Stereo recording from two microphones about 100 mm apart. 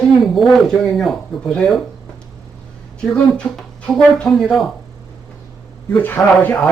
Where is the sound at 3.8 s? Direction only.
5° left (ahead or behind).